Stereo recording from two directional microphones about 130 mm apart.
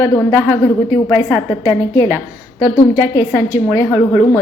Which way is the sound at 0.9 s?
30° left (ahead or behind).